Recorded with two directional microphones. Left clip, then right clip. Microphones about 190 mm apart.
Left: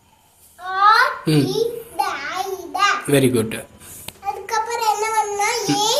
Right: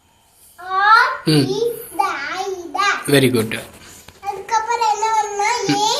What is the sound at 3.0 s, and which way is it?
Speech, centre (ahead or behind).